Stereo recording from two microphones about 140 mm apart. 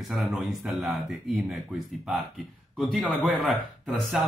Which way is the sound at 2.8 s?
Centre (ahead or behind).